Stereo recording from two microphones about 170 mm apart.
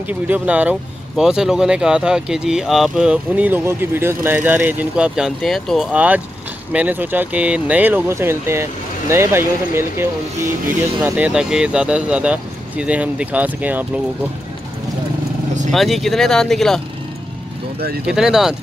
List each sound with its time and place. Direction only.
0.3 s speech: 10° right (ahead or behind)
15.7 s speech: centre (ahead or behind)
17.7 s speech: 65° right (ahead or behind)
18.0 s speech: 5° right (ahead or behind)